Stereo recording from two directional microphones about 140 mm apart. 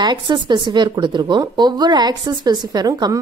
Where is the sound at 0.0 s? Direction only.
30° right (ahead or behind).